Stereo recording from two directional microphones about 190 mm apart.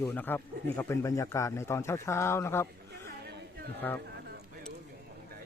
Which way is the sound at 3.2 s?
65° right (ahead or behind).